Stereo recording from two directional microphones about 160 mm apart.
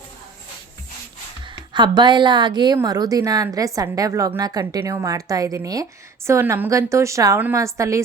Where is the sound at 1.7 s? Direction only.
30° right (ahead or behind).